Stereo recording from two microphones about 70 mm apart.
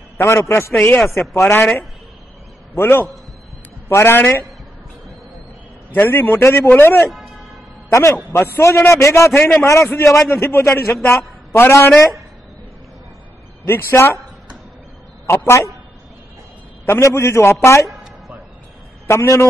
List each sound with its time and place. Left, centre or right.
0.2 s a man's voice: left
2.7 s a man's voice: left
5.9 s a man's voice: left
8.3 s a man's voice: left
9.4 s a man's voice: left
9.9 s a man's voice: left
13.7 s a man's voice: left
15.2 s a man's voice: left
16.8 s a man's voice: left
19.0 s a man's voice: left